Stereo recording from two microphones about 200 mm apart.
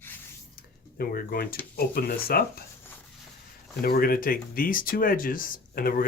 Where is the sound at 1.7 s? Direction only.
50° left (ahead or behind).